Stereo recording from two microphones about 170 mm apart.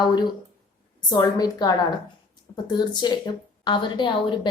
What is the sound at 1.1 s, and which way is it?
A woman's voice, 25° left (ahead or behind).